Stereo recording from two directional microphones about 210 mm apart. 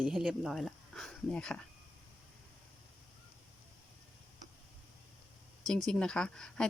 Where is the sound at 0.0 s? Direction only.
Centre (ahead or behind).